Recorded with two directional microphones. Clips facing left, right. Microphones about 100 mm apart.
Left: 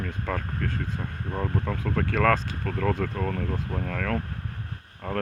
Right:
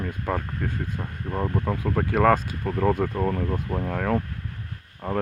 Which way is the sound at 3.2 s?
35° right (ahead or behind).